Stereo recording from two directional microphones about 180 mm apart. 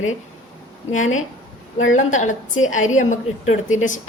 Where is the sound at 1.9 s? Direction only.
40° left (ahead or behind).